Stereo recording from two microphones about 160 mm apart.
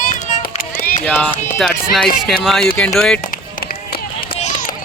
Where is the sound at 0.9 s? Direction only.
10° left (ahead or behind).